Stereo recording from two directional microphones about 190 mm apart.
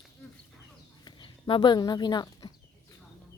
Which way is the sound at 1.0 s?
25° left (ahead or behind).